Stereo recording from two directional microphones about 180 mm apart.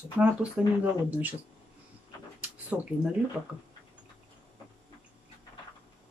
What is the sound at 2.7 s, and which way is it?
Laughter, 5° right (ahead or behind).